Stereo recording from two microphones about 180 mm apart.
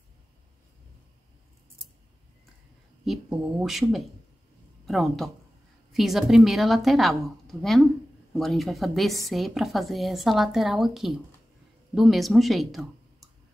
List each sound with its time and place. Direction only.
3.1 s a woman's voice: 5° right (ahead or behind)